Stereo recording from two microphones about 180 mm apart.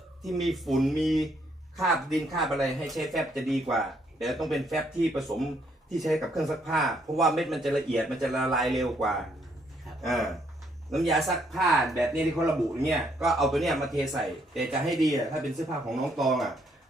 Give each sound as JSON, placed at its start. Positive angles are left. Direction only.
{"t": 0.2, "sound": "speech", "side_deg": 0}